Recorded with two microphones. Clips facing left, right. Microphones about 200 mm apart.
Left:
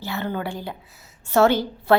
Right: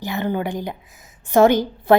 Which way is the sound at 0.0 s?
15° right (ahead or behind).